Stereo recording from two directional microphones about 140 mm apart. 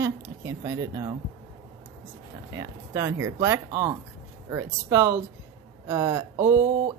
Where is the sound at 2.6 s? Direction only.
20° right (ahead or behind).